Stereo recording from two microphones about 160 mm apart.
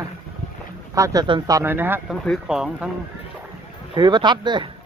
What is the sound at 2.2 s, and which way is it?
Speech, centre (ahead or behind).